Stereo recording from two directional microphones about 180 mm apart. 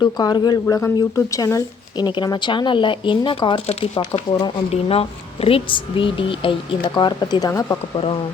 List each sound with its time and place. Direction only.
0.0 s speech: 25° left (ahead or behind)